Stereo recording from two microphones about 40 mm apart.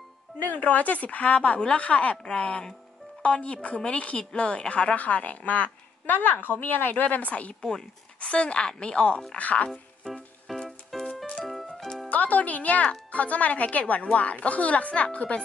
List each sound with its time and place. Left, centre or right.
0.4 s a woman's voice: left
4.9 s a woman's voice: left
9.4 s a woman's voice: left
10.5 s music: centre
12.1 s a woman's voice: left